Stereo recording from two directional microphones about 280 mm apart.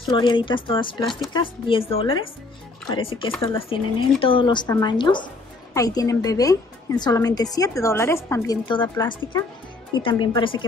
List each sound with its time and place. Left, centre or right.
0.1 s speech: centre